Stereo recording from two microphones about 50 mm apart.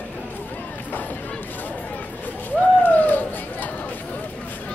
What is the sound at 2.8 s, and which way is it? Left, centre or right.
Bird, left.